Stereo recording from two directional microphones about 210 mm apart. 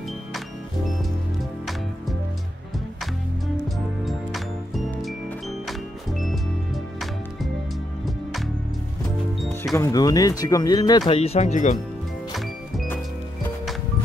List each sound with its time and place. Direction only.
3.6 s music: centre (ahead or behind)
9.8 s speech: 15° left (ahead or behind); by 11.8 s 35° left (ahead or behind)